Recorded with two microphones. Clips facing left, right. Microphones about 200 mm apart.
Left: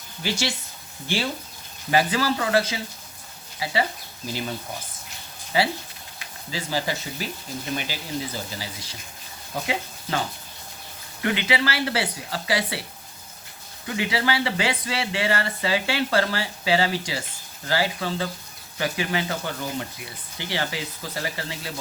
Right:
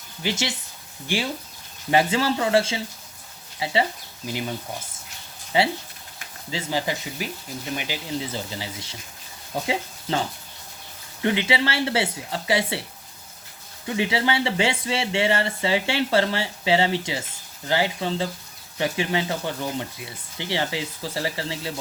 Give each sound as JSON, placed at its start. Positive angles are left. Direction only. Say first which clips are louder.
{"t": 0.2, "sound": "speech", "louder": "even", "side_deg": -20}
{"t": 5.5, "sound": "speech", "louder": "right 2 dB", "side_deg": -25}
{"t": 13.8, "sound": "speech", "louder": "right 2 dB", "side_deg": -25}